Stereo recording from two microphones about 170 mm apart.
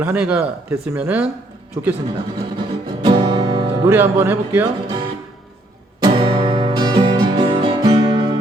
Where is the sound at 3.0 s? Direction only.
25° right (ahead or behind).